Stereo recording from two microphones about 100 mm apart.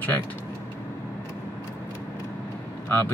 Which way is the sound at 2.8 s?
20° left (ahead or behind).